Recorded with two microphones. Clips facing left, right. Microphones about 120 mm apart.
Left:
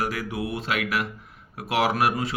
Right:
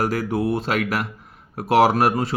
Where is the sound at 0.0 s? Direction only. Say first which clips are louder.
Right 7 dB; 40° right (ahead or behind).